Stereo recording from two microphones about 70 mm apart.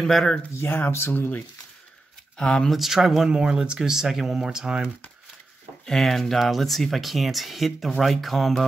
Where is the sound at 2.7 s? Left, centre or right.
Centre.